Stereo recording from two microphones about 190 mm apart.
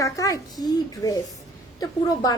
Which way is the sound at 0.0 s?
20° left (ahead or behind).